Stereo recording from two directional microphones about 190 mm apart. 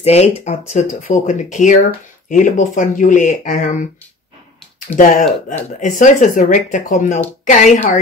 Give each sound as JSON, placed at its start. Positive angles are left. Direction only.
{"t": 0.0, "sound": "speech", "side_deg": 35}
{"t": 4.9, "sound": "speech", "side_deg": 10}
{"t": 5.8, "sound": "speech", "side_deg": 40}